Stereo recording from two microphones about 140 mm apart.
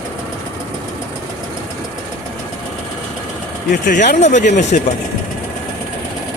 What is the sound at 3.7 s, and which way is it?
Speech, 70° left (ahead or behind).